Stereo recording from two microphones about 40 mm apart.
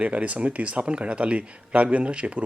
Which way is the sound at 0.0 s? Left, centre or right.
Right.